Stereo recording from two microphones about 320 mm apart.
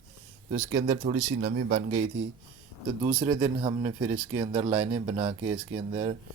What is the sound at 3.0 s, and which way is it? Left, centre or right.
Speech, centre.